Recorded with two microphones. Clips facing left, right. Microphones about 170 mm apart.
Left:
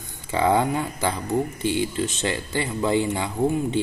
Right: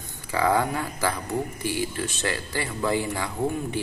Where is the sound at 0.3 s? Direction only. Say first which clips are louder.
Left 3 dB; 20° left (ahead or behind).